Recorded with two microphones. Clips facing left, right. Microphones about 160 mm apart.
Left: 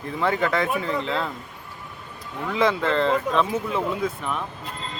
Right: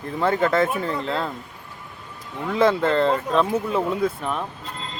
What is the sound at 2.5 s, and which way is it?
Speech, 45° right (ahead or behind).